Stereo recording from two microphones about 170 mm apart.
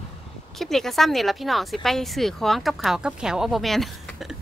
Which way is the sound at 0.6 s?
Centre (ahead or behind).